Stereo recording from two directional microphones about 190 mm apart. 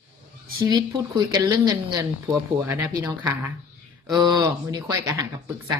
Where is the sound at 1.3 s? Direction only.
20° right (ahead or behind).